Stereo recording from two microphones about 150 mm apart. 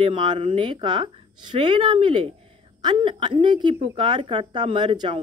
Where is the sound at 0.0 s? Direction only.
35° right (ahead or behind).